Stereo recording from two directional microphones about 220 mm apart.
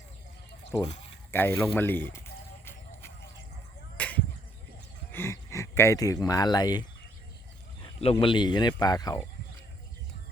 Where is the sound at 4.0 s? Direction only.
5° left (ahead or behind).